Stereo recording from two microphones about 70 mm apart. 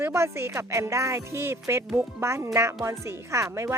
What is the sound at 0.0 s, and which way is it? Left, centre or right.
Speech, right.